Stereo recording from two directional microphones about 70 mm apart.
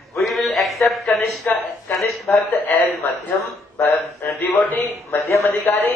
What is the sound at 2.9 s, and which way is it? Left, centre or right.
A woman's voice, left.